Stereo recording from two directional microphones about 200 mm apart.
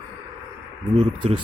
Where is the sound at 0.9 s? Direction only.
25° right (ahead or behind).